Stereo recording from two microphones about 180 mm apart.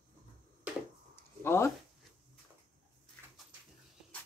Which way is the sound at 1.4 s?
15° left (ahead or behind).